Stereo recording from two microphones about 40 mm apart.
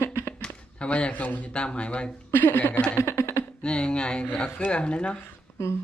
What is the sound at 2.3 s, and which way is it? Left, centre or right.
Speech, left.